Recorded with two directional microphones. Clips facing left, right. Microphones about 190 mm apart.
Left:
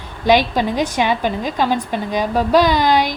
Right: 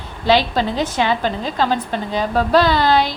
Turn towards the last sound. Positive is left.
turn(degrees=15)  # may be behind; listen again after turning